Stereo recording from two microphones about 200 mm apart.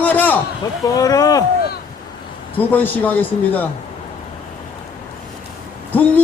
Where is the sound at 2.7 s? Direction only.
10° left (ahead or behind).